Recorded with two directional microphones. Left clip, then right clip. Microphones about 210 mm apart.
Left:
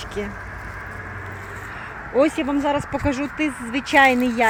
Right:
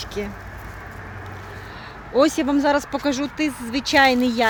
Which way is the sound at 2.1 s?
15° right (ahead or behind).